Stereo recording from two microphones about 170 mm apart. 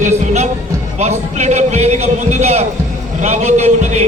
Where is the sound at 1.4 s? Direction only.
40° right (ahead or behind).